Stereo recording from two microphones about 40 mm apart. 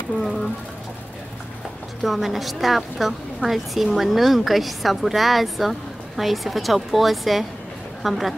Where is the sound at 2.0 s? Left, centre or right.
Centre.